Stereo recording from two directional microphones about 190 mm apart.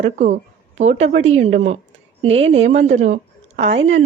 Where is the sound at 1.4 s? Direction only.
35° right (ahead or behind).